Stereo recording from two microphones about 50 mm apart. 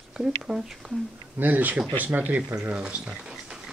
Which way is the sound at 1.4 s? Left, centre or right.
Right.